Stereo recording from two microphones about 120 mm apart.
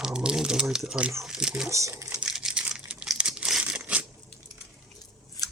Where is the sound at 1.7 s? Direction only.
25° right (ahead or behind).